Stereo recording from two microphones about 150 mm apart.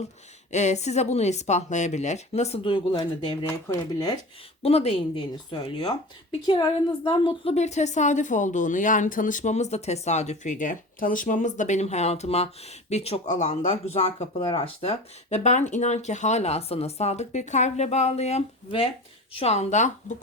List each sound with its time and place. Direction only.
0.5 s a woman's voice: 50° left (ahead or behind)
2.7 s speech: 30° left (ahead or behind)
4.6 s speech: 40° left (ahead or behind)
7.5 s a woman's voice: 50° left (ahead or behind)